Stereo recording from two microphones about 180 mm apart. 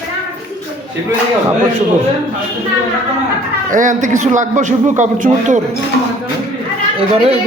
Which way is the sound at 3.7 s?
45° right (ahead or behind).